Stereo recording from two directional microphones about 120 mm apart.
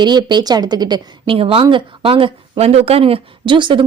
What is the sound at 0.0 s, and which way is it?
Speech, 35° right (ahead or behind).